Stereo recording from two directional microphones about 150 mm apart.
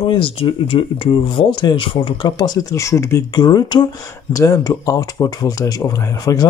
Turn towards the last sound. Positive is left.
turn(degrees=25)  # may be behind; listen again after turning